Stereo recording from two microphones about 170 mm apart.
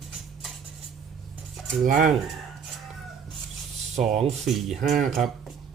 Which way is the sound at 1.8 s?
50° right (ahead or behind).